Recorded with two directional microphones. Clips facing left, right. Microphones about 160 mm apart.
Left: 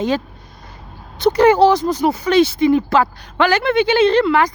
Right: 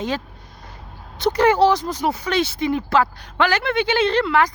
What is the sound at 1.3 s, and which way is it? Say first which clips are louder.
Speech: left 4 dB; 20° left (ahead or behind).